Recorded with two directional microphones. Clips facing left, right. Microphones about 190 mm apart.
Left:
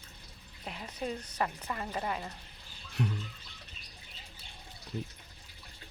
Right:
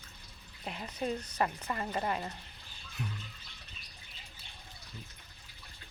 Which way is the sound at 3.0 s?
65° left (ahead or behind).